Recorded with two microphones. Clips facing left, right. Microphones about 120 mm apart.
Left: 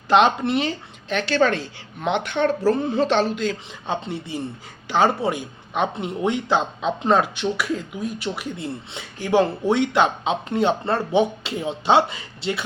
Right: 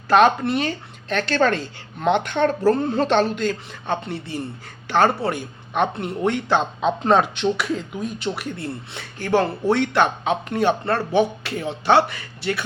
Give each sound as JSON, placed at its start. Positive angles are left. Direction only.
{"t": 0.1, "sound": "speech", "side_deg": 20}
{"t": 1.1, "sound": "a woman's voice", "side_deg": 5}
{"t": 3.5, "sound": "speech", "side_deg": 20}